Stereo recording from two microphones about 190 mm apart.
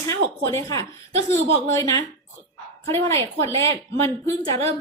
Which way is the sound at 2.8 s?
15° left (ahead or behind).